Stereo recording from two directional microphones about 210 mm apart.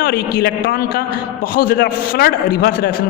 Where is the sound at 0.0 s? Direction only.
50° left (ahead or behind).